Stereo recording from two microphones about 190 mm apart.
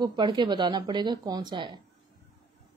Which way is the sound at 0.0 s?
25° right (ahead or behind).